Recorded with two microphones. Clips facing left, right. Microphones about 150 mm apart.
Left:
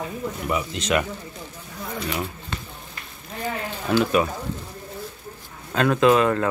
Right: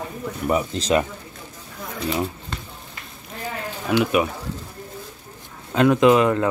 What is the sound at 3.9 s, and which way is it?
Speech, 15° right (ahead or behind).